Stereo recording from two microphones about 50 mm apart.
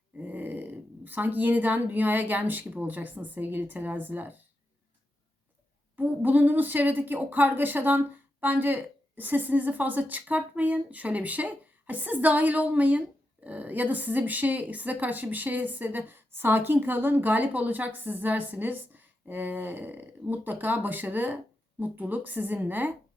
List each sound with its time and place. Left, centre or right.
0.2 s speech: right
6.0 s a woman's voice: right